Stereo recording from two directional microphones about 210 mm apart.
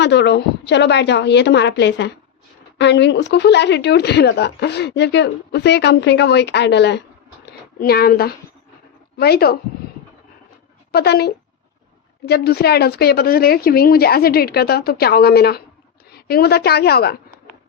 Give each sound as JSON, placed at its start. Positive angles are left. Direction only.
{"t": 0.0, "sound": "a woman's voice", "side_deg": 55}
{"t": 10.9, "sound": "a woman's voice", "side_deg": 50}